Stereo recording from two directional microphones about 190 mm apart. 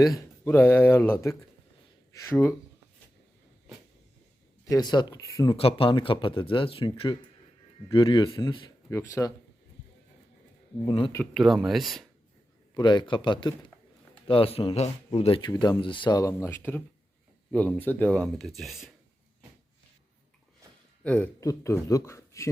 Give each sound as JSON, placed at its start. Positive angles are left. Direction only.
{"t": 0.0, "sound": "speech", "side_deg": 15}
{"t": 4.6, "sound": "speech", "side_deg": 20}
{"t": 5.5, "sound": "speech", "side_deg": 30}
{"t": 10.8, "sound": "speech", "side_deg": 30}
{"t": 11.3, "sound": "speech", "side_deg": 0}
{"t": 12.7, "sound": "speech", "side_deg": 25}
{"t": 21.0, "sound": "speech", "side_deg": 5}